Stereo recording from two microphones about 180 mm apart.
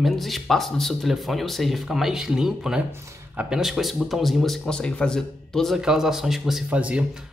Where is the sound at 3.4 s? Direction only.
5° right (ahead or behind).